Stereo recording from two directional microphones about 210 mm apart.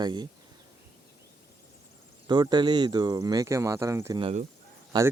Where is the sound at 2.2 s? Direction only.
20° right (ahead or behind).